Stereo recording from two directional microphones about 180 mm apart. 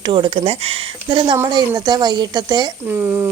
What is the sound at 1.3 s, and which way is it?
Speech, 15° right (ahead or behind).